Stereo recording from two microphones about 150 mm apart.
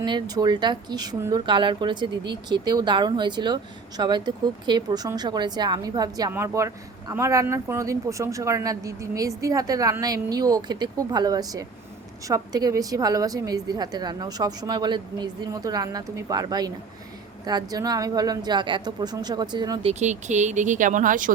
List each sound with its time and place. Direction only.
0.0 s a woman's voice: 30° right (ahead or behind)
19.8 s speech: 50° right (ahead or behind)